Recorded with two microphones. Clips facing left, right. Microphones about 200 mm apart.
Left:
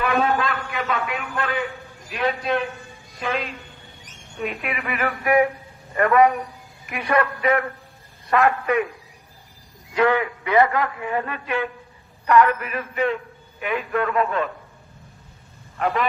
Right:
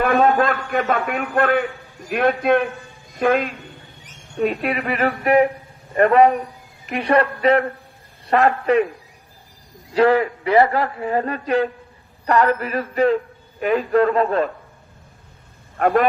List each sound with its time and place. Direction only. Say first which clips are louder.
0.0 s a man's voice: right 5 dB; 50° right (ahead or behind)
4.4 s a man's voice: right 7 dB; 40° right (ahead or behind)
9.9 s a man's voice: right 4 dB; 35° right (ahead or behind)
15.8 s a man's voice: right 6 dB; 45° right (ahead or behind)